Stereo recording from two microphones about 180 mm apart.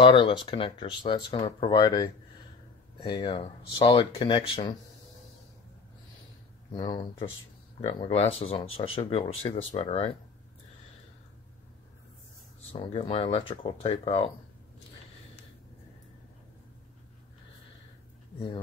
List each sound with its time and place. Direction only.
0.0 s speech: 30° left (ahead or behind)
6.7 s speech: 25° left (ahead or behind)
12.7 s speech: 35° left (ahead or behind)